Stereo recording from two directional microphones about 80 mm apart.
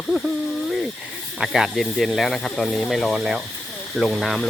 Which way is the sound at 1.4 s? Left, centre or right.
Centre.